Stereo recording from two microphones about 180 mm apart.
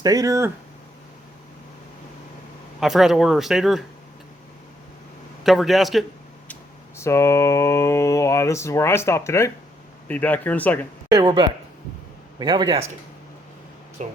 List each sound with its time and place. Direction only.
0.0 s speech: 20° right (ahead or behind)
2.8 s speech: centre (ahead or behind)
5.4 s speech: centre (ahead or behind)
6.5 s a sound: 15° left (ahead or behind)
11.1 s speech: 25° right (ahead or behind)
14.0 s speech: 40° right (ahead or behind)